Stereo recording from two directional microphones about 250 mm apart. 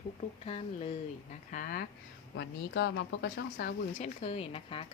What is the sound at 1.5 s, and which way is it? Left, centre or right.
Speech, left.